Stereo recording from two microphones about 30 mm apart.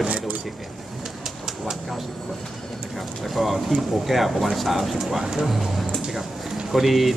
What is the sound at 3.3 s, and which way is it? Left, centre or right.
Speech, centre.